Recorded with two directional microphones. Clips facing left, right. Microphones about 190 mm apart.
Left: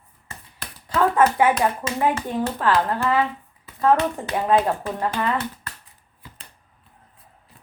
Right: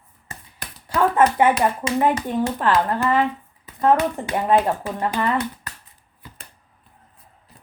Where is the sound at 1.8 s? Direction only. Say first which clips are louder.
Right 3 dB; 15° right (ahead or behind).